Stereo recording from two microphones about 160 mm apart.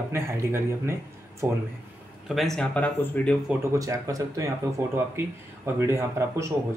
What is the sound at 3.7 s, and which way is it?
Speech, 20° right (ahead or behind).